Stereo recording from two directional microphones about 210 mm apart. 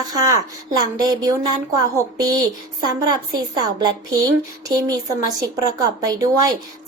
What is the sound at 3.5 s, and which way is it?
Speech, 20° right (ahead or behind).